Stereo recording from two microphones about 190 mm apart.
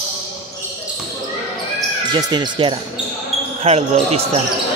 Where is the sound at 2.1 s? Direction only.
25° right (ahead or behind).